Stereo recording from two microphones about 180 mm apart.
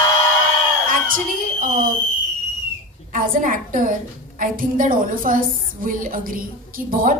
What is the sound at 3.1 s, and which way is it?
A woman's voice, 50° right (ahead or behind).